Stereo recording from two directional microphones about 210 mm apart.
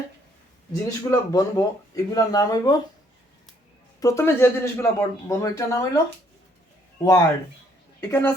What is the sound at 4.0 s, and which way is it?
Speech, 15° left (ahead or behind).